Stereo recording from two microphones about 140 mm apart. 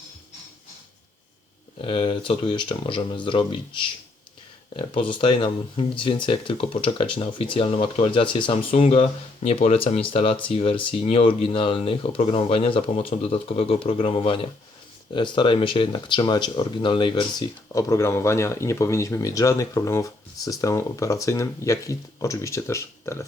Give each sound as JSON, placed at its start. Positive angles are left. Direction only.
{"t": 1.8, "sound": "speech", "side_deg": 40}